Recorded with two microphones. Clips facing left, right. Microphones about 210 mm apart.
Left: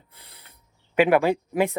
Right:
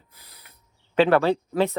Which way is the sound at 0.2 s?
25° left (ahead or behind).